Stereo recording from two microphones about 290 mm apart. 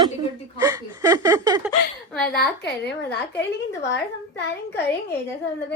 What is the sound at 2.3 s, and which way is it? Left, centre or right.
Speech, left.